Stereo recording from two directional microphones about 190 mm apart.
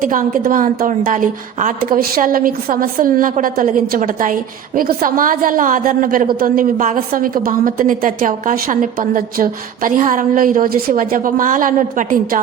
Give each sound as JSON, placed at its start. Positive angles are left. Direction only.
{"t": 0.0, "sound": "a woman's voice", "side_deg": -45}